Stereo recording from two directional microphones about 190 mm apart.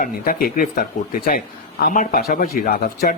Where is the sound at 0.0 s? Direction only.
50° left (ahead or behind).